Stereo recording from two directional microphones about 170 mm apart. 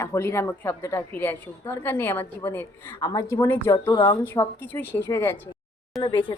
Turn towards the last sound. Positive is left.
turn(degrees=30)  # may be behind; listen again after turning